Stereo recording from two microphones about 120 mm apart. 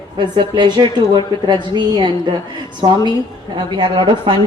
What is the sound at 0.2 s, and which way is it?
A woman's voice, 40° right (ahead or behind).